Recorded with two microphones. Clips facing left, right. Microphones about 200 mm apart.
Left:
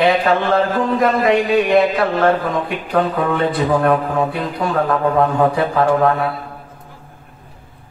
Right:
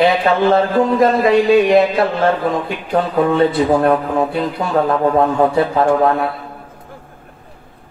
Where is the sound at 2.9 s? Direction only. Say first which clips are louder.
Right 3 dB; 25° right (ahead or behind).